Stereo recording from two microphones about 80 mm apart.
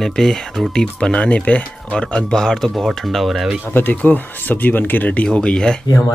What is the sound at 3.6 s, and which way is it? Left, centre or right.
Speech, left.